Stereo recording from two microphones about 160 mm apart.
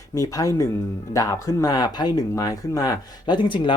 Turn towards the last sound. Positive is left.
turn(degrees=30)  # may be behind; listen again after turning